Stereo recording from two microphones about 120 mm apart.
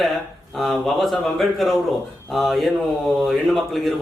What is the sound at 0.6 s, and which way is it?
Speech, centre (ahead or behind).